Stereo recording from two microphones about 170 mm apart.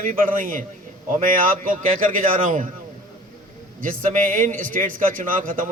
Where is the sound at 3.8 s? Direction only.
50° right (ahead or behind).